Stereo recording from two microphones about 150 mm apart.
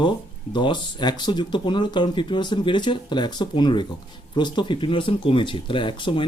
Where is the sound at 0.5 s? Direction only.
30° left (ahead or behind).